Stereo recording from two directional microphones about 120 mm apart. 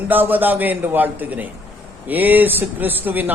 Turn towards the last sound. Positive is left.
turn(degrees=-15)  # may be behind; listen again after turning